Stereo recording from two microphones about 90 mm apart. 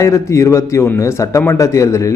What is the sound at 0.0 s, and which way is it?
Speech, 35° left (ahead or behind).